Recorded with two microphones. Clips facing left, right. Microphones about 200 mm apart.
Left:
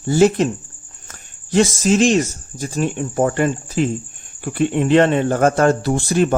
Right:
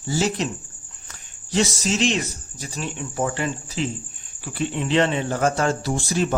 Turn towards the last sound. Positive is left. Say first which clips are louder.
# left 6 dB
turn(degrees=55)  # may be behind; listen again after turning